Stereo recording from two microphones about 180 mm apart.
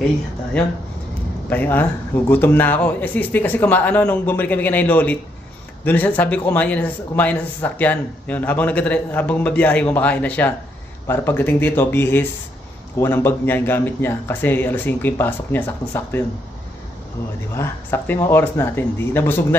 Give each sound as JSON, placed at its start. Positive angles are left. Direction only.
{"t": 1.5, "sound": "a man's voice", "side_deg": 10}
{"t": 17.6, "sound": "a man's voice", "side_deg": 10}